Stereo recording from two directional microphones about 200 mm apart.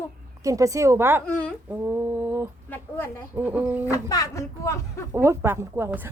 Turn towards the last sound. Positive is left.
turn(degrees=-10)  # may be behind; listen again after turning